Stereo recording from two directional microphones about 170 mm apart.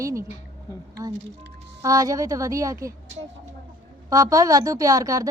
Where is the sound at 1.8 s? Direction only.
20° right (ahead or behind).